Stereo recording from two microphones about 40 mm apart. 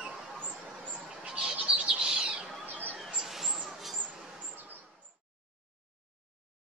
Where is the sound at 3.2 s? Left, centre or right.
Centre.